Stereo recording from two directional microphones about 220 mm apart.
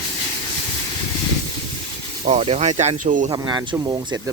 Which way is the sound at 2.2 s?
30° right (ahead or behind).